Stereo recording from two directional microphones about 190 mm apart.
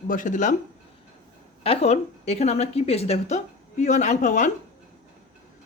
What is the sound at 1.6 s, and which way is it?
A woman's voice, 30° left (ahead or behind).